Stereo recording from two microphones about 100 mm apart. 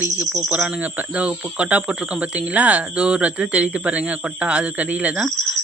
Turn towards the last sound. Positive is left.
turn(degrees=-10)  # may be behind; listen again after turning